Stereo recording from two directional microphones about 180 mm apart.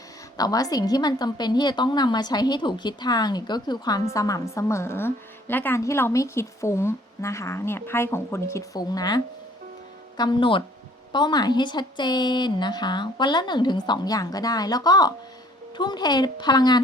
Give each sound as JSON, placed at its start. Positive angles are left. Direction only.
{"t": 0.3, "sound": "a woman's voice", "side_deg": 20}